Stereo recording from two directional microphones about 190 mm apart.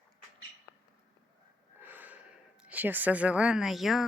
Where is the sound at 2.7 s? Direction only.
10° right (ahead or behind).